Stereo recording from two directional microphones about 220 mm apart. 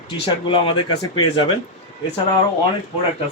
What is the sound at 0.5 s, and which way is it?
Speech, 20° left (ahead or behind).